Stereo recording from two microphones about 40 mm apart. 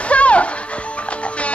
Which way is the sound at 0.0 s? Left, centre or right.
Left.